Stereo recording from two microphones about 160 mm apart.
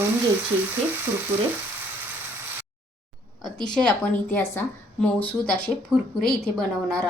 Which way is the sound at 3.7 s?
10° left (ahead or behind).